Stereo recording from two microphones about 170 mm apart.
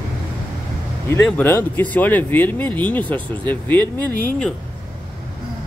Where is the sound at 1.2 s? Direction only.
10° left (ahead or behind).